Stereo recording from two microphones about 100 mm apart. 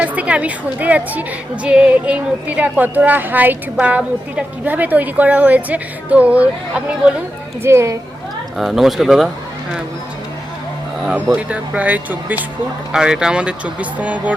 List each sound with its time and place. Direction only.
0.0 s a woman's voice: 10° right (ahead or behind)
7.6 s speech: 25° right (ahead or behind)
8.5 s speech: centre (ahead or behind)
11.1 s a woman's voice: 15° right (ahead or behind)